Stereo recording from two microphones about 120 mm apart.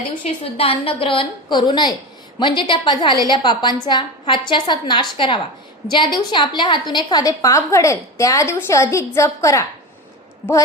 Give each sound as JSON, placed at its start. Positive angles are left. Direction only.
{"t": 0.4, "sound": "a woman's voice", "side_deg": 55}